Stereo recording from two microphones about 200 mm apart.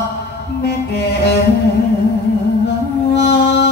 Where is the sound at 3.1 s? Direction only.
60° left (ahead or behind).